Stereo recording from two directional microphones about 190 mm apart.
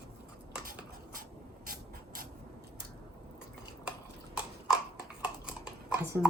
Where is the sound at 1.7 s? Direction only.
50° right (ahead or behind).